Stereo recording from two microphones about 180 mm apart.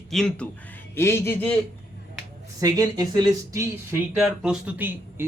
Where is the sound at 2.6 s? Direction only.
20° right (ahead or behind).